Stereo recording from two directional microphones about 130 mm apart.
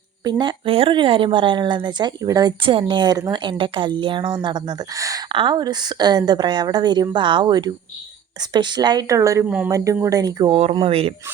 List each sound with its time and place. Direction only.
0.3 s a woman's voice: 35° right (ahead or behind)
2.6 s a woman's voice: 40° right (ahead or behind)
5.3 s a woman's voice: 40° right (ahead or behind)
10.5 s speech: 45° right (ahead or behind)